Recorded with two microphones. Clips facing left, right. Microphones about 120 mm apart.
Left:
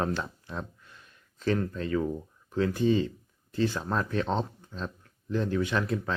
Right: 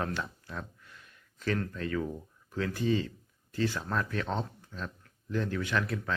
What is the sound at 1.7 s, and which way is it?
Speech, 25° left (ahead or behind).